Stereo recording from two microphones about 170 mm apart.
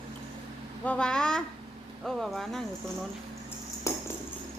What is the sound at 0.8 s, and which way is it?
A woman's voice, 5° left (ahead or behind).